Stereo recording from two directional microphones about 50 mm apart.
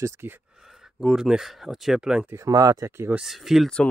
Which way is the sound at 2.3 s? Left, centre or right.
Right.